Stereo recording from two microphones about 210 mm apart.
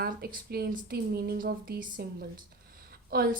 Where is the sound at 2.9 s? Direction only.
45° right (ahead or behind).